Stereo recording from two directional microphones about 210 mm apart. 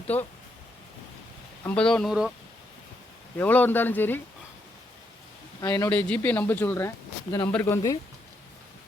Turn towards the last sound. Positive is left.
turn(degrees=10)  # may be behind; listen again after turning